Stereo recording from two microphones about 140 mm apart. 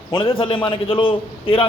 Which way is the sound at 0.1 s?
40° left (ahead or behind).